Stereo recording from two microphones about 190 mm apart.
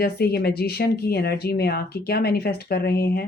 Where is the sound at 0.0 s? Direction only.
55° left (ahead or behind).